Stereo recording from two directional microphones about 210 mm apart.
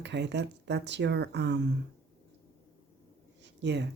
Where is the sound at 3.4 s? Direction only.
55° right (ahead or behind).